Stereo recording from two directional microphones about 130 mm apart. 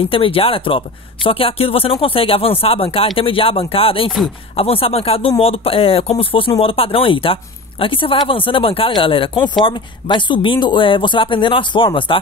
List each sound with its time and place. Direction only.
0.1 s speech: 45° left (ahead or behind)